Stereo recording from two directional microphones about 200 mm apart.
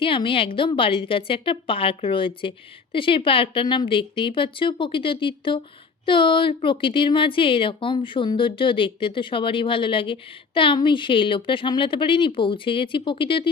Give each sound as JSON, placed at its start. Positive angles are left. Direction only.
{"t": 0.0, "sound": "a woman's voice", "side_deg": 25}